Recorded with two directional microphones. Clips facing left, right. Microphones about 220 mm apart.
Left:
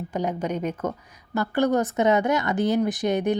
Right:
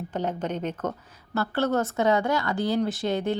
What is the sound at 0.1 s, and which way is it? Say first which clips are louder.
Speech: left 2 dB; 10° left (ahead or behind).